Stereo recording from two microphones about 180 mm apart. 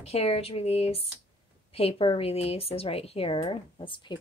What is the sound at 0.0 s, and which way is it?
A woman's voice, 35° left (ahead or behind).